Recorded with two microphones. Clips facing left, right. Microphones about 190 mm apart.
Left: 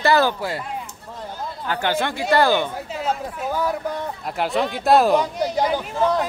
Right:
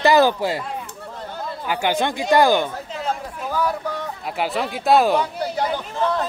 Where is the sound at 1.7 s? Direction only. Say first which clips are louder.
Right 1 dB; 15° right (ahead or behind).